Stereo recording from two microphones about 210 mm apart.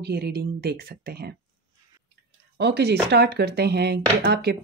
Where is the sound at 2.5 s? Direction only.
50° right (ahead or behind).